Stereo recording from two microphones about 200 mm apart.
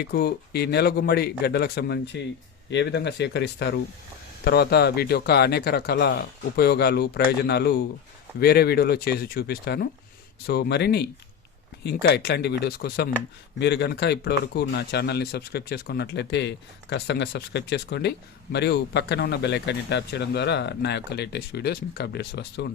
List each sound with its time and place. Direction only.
0.0 s speech: 55° left (ahead or behind)